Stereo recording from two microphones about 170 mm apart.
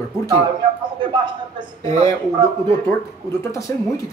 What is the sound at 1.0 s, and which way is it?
Speech, 30° right (ahead or behind).